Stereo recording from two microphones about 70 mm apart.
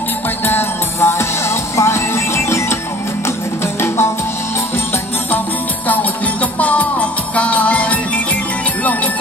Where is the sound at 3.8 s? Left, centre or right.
Left.